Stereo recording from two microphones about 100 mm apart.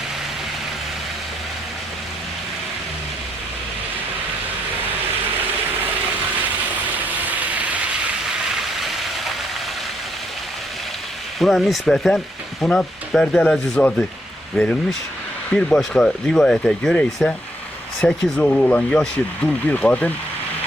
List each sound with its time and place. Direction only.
6.9 s vehicle: 15° right (ahead or behind)
8.7 s rain: centre (ahead or behind)
11.3 s speech: centre (ahead or behind)